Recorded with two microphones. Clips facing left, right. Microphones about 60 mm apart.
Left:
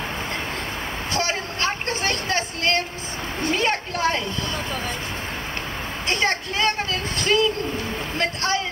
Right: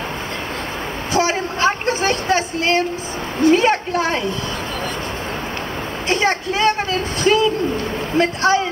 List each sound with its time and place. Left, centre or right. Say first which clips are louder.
1.1 s a sound: right 8 dB; centre
3.5 s speech: right 7 dB; centre
6.0 s speech: right 5 dB; centre